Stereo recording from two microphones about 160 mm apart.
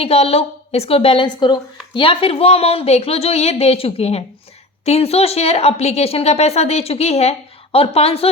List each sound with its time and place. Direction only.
0.0 s a woman's voice: 40° left (ahead or behind)